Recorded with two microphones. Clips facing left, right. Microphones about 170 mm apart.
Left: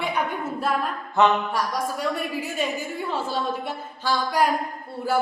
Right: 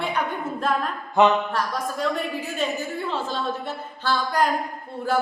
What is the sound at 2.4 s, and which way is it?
A man's voice, 10° left (ahead or behind).